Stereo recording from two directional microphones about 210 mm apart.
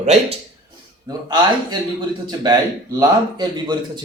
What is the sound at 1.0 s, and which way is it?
Speech, 20° right (ahead or behind).